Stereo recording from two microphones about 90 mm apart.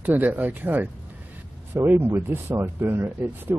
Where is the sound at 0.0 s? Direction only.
20° right (ahead or behind).